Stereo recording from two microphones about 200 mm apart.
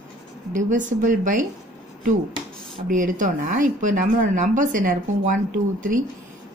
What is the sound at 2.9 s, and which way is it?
Speech, 40° right (ahead or behind).